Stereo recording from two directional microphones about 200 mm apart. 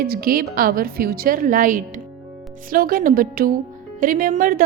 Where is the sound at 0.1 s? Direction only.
45° right (ahead or behind).